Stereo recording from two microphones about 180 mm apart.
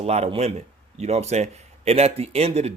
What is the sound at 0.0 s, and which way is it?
A man's voice, 35° right (ahead or behind).